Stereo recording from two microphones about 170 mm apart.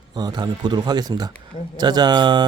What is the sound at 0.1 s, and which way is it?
Speech, 25° right (ahead or behind).